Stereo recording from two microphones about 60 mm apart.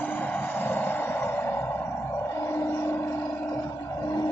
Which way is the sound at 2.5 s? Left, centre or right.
Left.